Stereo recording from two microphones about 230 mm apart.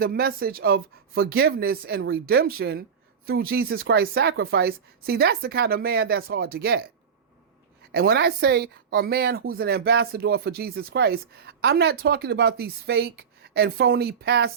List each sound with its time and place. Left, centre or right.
0.0 s speech: right
7.9 s speech: right